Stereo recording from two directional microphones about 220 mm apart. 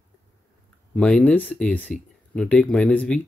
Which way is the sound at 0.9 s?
5° left (ahead or behind).